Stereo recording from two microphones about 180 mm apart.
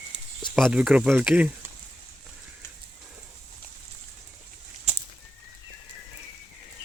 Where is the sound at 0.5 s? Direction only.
Centre (ahead or behind).